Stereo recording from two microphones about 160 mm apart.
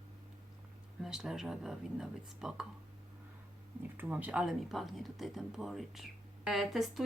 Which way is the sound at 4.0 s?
10° right (ahead or behind).